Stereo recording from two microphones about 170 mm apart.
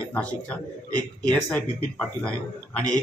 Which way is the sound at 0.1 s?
10° left (ahead or behind).